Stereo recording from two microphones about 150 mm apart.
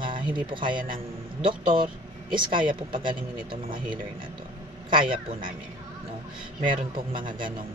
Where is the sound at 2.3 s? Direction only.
35° right (ahead or behind).